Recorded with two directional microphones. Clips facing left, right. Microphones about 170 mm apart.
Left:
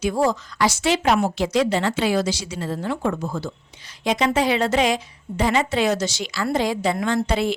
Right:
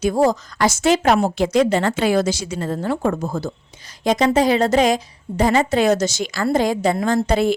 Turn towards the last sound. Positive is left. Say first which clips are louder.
# right 4 dB
turn(degrees=-45)  # may be behind; listen again after turning